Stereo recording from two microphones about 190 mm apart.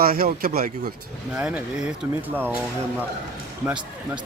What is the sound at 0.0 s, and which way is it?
Speech, 55° right (ahead or behind).